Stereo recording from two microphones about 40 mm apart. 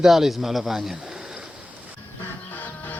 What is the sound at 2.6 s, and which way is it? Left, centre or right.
Music, left.